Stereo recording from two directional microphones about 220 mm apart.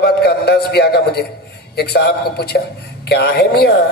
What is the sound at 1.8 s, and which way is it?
A man's voice, 45° left (ahead or behind).